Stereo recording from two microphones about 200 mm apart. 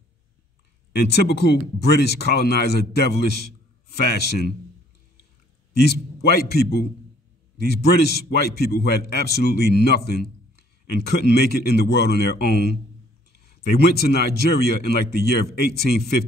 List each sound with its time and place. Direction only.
0.9 s a man's voice: 55° left (ahead or behind)
5.7 s a man's voice: 55° left (ahead or behind)